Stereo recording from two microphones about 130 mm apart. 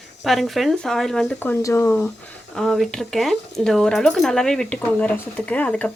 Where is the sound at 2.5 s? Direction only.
5° left (ahead or behind).